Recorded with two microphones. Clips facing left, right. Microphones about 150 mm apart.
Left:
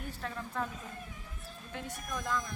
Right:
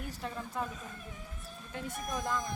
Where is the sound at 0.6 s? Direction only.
10° right (ahead or behind).